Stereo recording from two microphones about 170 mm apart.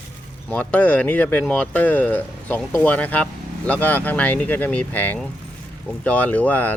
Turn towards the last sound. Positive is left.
turn(degrees=10)  # may be behind; listen again after turning